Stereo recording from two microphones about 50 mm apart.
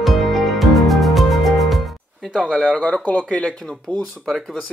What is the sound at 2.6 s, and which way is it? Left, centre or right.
Speech, left.